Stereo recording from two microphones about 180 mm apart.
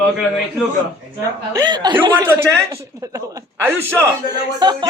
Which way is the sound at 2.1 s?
10° right (ahead or behind).